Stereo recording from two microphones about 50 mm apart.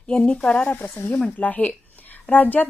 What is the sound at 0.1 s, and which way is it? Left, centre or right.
A woman's voice, left.